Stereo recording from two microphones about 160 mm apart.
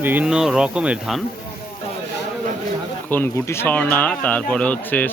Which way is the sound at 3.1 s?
15° left (ahead or behind).